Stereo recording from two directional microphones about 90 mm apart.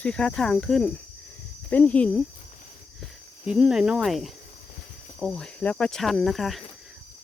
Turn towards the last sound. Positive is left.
turn(degrees=0)  # may be behind; listen again after turning